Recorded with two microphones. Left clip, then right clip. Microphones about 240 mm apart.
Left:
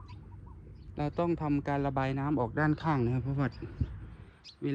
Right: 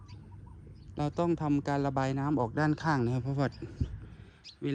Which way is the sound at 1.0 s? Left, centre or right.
Centre.